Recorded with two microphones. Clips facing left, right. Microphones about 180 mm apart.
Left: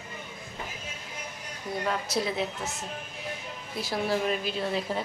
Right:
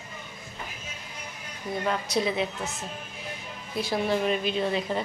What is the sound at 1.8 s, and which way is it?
Speech, centre (ahead or behind).